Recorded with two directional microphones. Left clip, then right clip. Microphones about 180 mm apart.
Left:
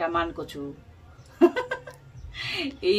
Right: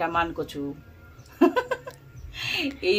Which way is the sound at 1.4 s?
20° left (ahead or behind).